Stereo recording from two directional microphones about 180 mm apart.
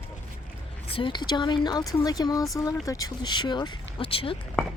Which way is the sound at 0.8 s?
30° left (ahead or behind).